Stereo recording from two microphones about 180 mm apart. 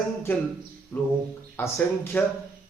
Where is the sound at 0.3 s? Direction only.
15° left (ahead or behind).